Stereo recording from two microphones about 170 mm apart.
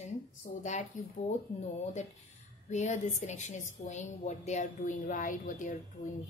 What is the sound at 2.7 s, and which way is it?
A woman's voice, 45° left (ahead or behind).